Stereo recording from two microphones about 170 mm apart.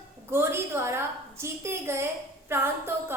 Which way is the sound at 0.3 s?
15° right (ahead or behind).